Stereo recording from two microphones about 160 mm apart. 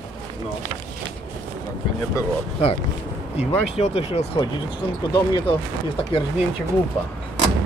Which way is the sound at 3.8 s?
40° left (ahead or behind).